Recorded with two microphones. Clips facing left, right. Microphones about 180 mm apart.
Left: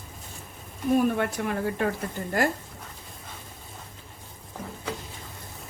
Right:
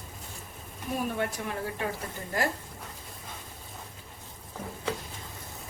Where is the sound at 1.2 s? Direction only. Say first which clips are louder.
Left 5 dB; 60° left (ahead or behind).